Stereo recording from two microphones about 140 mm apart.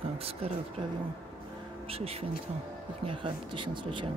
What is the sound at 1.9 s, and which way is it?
Speech, 45° right (ahead or behind).